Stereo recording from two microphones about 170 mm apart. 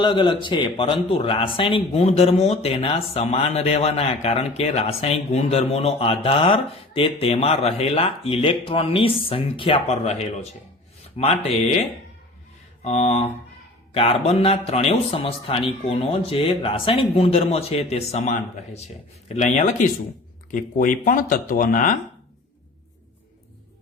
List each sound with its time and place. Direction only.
0.0 s speech: 25° left (ahead or behind)
12.8 s speech: 40° left (ahead or behind)